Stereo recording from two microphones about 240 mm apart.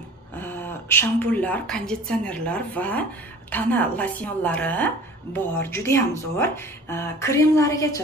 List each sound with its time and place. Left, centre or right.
0.4 s a woman's voice: centre